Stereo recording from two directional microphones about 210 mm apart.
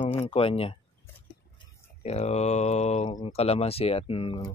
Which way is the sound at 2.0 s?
30° left (ahead or behind).